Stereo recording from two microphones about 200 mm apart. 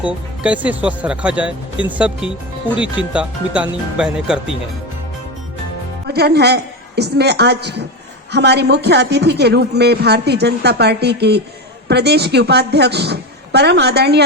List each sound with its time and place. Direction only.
0.0 s speech: 5° right (ahead or behind)
6.1 s a man's voice: 55° right (ahead or behind)